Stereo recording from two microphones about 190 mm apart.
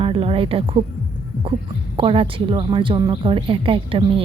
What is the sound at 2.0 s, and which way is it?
Speech, 30° right (ahead or behind).